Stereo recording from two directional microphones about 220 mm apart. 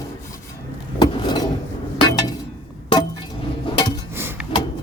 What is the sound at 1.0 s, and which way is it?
Vehicle, 20° left (ahead or behind).